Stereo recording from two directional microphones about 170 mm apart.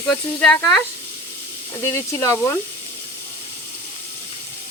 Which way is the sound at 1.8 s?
15° left (ahead or behind).